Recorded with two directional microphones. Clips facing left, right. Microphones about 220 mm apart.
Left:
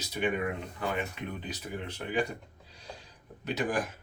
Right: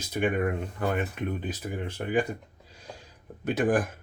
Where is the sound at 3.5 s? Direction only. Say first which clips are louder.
Right 6 dB; 50° right (ahead or behind).